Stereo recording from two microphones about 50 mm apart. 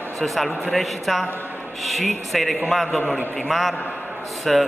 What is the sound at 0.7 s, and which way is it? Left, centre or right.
A man's voice, centre.